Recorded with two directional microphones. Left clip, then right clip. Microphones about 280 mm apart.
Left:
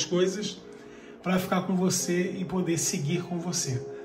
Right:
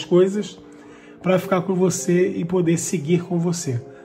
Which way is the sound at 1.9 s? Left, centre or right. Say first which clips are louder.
Right 9 dB; centre.